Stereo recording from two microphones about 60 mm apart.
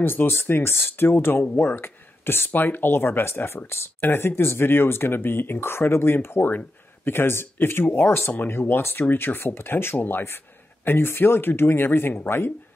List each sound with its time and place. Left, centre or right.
0.0 s speech: left